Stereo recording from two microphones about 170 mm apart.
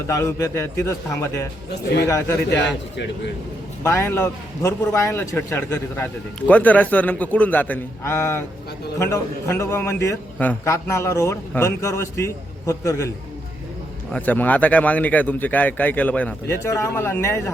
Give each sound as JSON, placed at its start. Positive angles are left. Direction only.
{"t": 0.1, "sound": "speech", "side_deg": 20}
{"t": 2.5, "sound": "a man's voice", "side_deg": 90}
{"t": 3.8, "sound": "speech", "side_deg": 15}
{"t": 14.1, "sound": "speech", "side_deg": 10}